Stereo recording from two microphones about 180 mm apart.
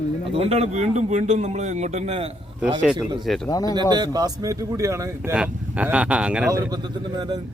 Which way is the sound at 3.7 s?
25° right (ahead or behind).